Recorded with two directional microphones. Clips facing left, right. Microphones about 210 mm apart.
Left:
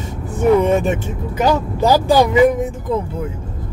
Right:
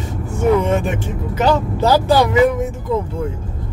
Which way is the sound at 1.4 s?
10° left (ahead or behind).